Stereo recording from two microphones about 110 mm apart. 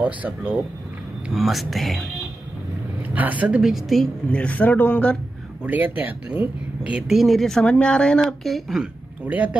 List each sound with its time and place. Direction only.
0.0 s speech: 15° right (ahead or behind)
1.3 s speech: centre (ahead or behind)
3.0 s speech: 15° right (ahead or behind)
4.3 s speech: 10° left (ahead or behind)
5.7 s speech: 15° right (ahead or behind)
7.2 s speech: centre (ahead or behind)
9.3 s speech: 15° right (ahead or behind)